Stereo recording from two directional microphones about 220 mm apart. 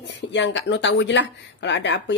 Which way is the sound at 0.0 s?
55° left (ahead or behind).